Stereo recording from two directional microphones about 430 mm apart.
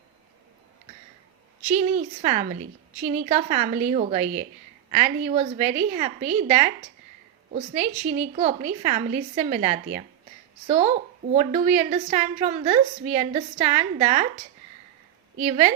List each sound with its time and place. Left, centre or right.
1.6 s a woman's voice: centre
15.4 s a woman's voice: centre